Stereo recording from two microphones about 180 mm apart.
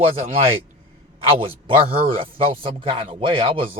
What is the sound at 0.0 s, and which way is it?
Speech, 35° right (ahead or behind).